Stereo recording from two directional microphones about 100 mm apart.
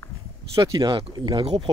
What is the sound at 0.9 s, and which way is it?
Speech, 50° right (ahead or behind).